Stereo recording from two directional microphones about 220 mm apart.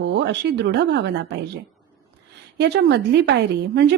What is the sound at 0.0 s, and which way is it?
A woman's voice, 50° right (ahead or behind).